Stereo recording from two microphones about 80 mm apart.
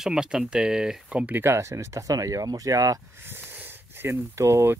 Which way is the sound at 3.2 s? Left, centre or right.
Right.